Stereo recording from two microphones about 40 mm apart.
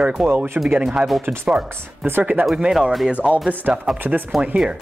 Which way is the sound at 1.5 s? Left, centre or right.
Centre.